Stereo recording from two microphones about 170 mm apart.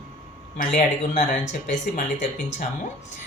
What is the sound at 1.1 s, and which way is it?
Speech, 45° left (ahead or behind).